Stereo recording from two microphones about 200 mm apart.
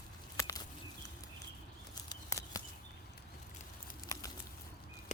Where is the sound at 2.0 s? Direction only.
15° left (ahead or behind).